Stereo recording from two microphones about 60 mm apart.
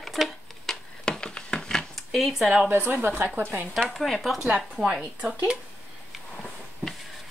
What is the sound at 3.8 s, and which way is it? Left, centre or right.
Speech, centre.